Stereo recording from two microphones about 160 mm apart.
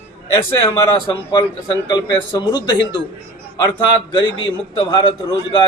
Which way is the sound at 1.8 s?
30° left (ahead or behind).